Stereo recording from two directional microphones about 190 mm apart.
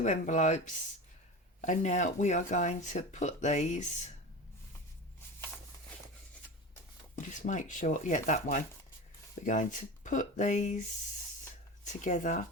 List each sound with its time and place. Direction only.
0.0 s speech: 40° left (ahead or behind)
1.6 s speech: 40° left (ahead or behind)
7.3 s speech: 40° left (ahead or behind)
11.9 s speech: 40° left (ahead or behind)